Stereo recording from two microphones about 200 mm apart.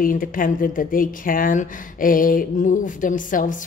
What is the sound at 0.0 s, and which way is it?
A woman's voice, 45° left (ahead or behind).